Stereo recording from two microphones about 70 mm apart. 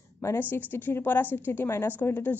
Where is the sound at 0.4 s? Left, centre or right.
Left.